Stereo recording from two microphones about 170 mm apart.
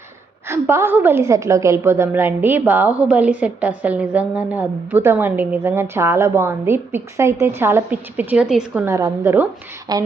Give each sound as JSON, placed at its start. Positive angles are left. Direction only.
{"t": 0.4, "sound": "a woman's voice", "side_deg": -15}